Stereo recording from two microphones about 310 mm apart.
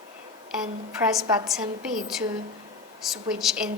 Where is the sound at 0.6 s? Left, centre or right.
Centre.